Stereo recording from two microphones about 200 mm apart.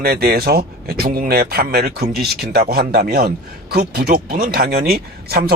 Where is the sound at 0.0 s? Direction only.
50° right (ahead or behind).